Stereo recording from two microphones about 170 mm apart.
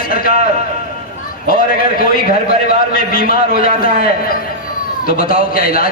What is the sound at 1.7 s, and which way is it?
A man's voice, 60° left (ahead or behind).